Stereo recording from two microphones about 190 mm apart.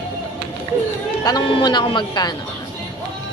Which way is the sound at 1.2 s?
25° left (ahead or behind).